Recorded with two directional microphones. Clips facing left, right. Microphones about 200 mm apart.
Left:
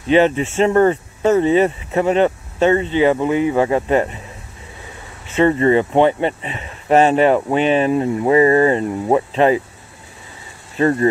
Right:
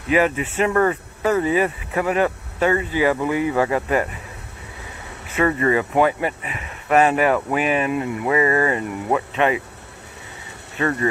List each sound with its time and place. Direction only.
0.1 s speech: 30° left (ahead or behind)
5.3 s speech: 25° left (ahead or behind)
10.8 s speech: 35° left (ahead or behind)